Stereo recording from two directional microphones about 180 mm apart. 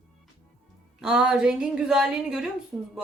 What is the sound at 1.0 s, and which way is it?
Speech, 5° right (ahead or behind).